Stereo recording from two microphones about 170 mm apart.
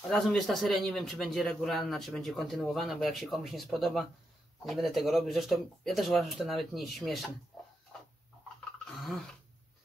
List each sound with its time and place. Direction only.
0.1 s a man's voice: centre (ahead or behind)